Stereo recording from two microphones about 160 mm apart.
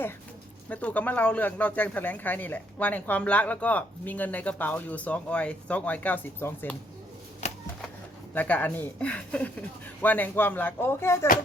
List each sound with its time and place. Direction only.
0.7 s speech: 10° left (ahead or behind)
7.4 s a sound: 40° left (ahead or behind)
8.3 s speech: 10° left (ahead or behind)